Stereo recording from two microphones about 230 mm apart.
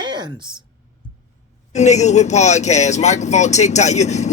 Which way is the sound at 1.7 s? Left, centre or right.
Left.